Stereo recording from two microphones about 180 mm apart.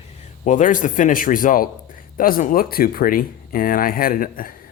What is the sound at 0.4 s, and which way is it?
Speech, 45° left (ahead or behind).